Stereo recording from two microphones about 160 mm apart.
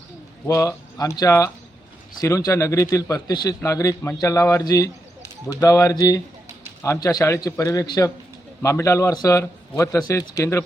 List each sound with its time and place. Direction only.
0.4 s a man's voice: 20° left (ahead or behind)